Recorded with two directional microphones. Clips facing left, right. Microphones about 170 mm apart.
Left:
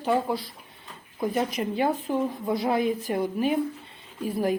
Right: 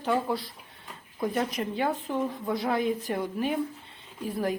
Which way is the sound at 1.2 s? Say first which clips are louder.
Left 2 dB; 5° left (ahead or behind).